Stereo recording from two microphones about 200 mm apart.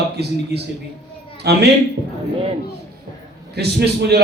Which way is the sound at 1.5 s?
55° right (ahead or behind).